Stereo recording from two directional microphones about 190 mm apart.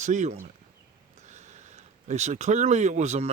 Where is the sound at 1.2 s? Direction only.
40° right (ahead or behind).